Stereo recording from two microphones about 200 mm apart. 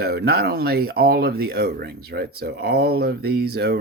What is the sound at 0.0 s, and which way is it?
Speech, 50° right (ahead or behind).